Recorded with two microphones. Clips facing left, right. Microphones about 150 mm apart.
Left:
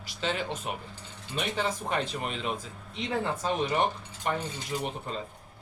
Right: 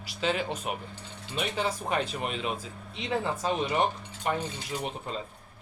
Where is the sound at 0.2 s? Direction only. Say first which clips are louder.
Right 2 dB; 5° right (ahead or behind).